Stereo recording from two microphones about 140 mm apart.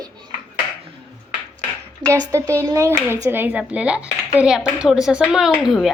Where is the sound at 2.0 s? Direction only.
10° left (ahead or behind).